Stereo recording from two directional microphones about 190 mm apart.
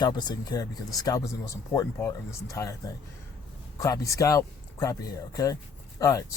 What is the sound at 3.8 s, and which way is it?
Speech, 15° left (ahead or behind).